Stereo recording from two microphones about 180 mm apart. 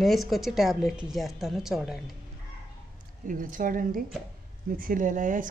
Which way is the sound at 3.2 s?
50° right (ahead or behind).